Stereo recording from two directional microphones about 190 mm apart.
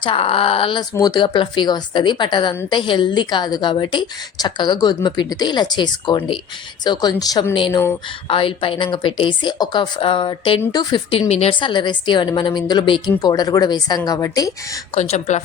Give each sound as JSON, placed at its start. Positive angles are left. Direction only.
{"t": 0.0, "sound": "a woman's voice", "side_deg": 30}
{"t": 11.3, "sound": "a woman's voice", "side_deg": 35}
{"t": 14.9, "sound": "speech", "side_deg": 35}